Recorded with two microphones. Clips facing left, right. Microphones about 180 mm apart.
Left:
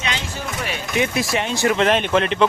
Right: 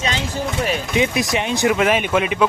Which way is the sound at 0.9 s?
20° right (ahead or behind).